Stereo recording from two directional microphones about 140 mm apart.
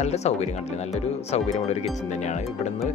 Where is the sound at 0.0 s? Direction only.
50° left (ahead or behind).